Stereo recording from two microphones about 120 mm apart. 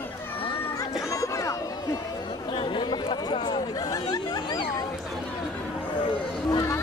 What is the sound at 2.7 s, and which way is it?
Chatter, 40° left (ahead or behind).